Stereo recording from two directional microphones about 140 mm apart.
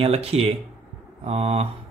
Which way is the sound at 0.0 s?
45° right (ahead or behind).